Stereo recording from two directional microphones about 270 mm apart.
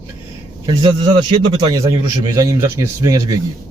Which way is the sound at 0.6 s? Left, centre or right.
Centre.